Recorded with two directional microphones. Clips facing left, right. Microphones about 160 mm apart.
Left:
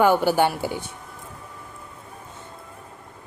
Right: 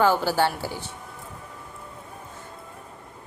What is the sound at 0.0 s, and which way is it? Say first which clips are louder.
Speech: left 3 dB; 15° left (ahead or behind).